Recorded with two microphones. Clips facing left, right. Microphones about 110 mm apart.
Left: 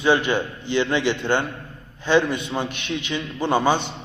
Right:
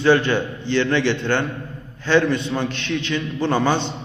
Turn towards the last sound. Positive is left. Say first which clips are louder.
# even
turn(degrees=15)  # may be behind; listen again after turning